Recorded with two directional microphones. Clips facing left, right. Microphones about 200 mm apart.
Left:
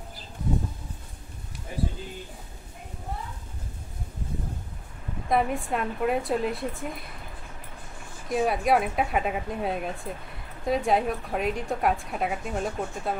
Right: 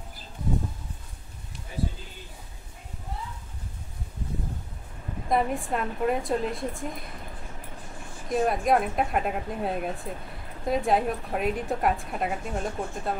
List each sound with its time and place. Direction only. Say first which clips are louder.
5.3 s a woman's voice: left 1 dB; centre (ahead or behind)
8.3 s a woman's voice: even; 5° left (ahead or behind)